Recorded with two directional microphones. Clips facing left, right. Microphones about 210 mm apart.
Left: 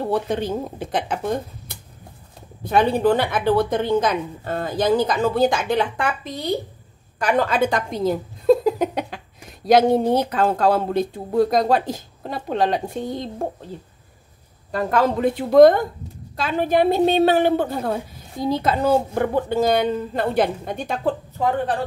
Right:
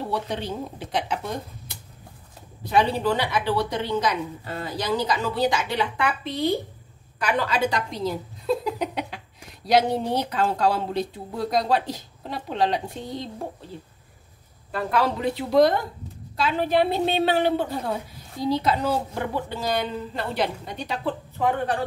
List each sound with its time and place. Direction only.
0.1 s speech: 50° left (ahead or behind)
2.6 s a woman's voice: 50° left (ahead or behind)
14.7 s speech: 45° left (ahead or behind)